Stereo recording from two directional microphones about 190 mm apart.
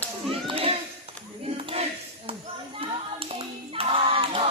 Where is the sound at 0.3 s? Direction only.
30° right (ahead or behind).